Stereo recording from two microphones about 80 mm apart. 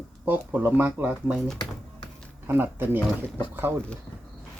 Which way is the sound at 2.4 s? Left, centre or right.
Right.